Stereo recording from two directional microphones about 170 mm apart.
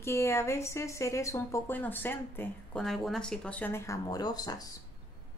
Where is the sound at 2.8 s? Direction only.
Centre (ahead or behind).